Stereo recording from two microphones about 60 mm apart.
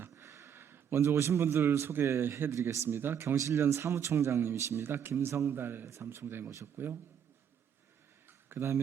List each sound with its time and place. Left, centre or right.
0.2 s a man's voice: right
2.5 s speech: right
2.8 s speech: right
3.3 s speech: right
5.8 s speech: right
6.1 s speech: right
8.4 s speech: right